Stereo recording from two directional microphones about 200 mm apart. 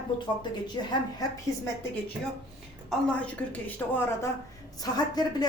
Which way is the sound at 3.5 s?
10° left (ahead or behind).